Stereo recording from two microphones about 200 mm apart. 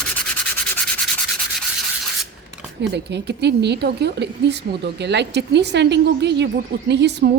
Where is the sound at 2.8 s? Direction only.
60° right (ahead or behind).